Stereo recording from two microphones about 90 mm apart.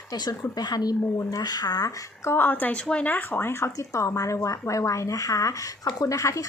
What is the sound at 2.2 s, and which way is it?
Speech, 25° left (ahead or behind).